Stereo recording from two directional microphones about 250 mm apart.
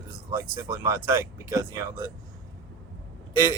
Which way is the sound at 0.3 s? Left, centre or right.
Centre.